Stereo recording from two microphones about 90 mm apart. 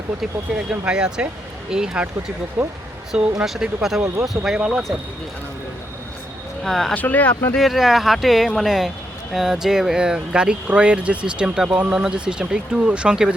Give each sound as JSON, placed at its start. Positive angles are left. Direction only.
{"t": 0.2, "sound": "speech", "side_deg": -10}
{"t": 4.7, "sound": "speech", "side_deg": 0}
{"t": 6.7, "sound": "speech", "side_deg": 5}
{"t": 6.9, "sound": "speech", "side_deg": 20}
{"t": 7.5, "sound": "speech", "side_deg": 0}